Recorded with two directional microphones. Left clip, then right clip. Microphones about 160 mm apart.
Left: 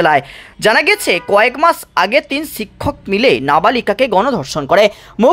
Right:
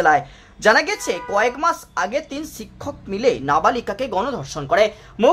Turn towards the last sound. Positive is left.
turn(degrees=25)  # may be behind; listen again after turning